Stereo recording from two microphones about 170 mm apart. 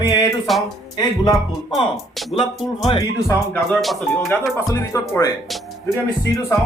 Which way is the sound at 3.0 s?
15° left (ahead or behind).